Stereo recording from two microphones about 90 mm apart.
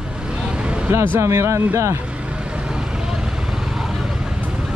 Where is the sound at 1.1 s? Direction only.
30° right (ahead or behind).